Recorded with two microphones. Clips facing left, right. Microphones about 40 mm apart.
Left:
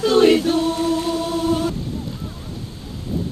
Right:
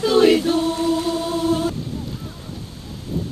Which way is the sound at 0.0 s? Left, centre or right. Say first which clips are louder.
Left 1 dB; centre.